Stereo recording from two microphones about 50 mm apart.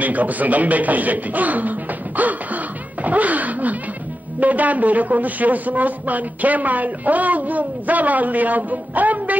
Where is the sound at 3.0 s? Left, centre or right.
Right.